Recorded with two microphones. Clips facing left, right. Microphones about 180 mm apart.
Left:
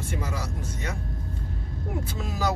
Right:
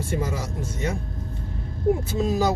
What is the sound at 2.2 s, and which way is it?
Speech, 25° right (ahead or behind).